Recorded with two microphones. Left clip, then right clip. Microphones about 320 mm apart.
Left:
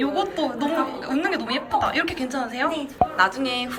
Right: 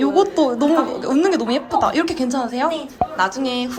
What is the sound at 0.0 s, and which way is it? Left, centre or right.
A woman's voice, centre.